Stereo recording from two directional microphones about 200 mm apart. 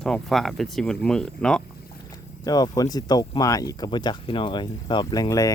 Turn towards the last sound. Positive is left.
turn(degrees=15)  # may be behind; listen again after turning